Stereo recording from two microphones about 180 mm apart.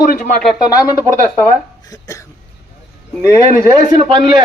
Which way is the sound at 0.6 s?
20° left (ahead or behind).